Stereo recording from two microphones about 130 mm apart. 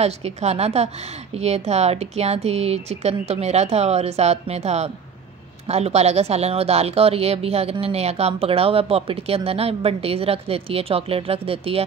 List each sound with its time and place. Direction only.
0.0 s speech: 55° right (ahead or behind)